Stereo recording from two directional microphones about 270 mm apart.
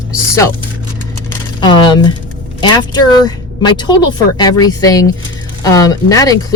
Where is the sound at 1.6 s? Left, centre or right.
Centre.